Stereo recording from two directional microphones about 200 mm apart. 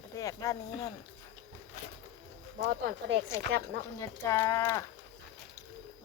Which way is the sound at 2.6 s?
55° right (ahead or behind).